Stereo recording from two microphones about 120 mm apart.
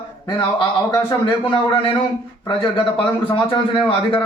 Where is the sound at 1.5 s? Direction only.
45° left (ahead or behind).